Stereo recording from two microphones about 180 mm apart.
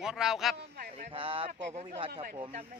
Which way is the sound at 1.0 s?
30° right (ahead or behind).